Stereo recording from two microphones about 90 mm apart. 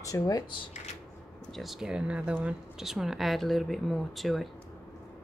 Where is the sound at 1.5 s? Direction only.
Centre (ahead or behind).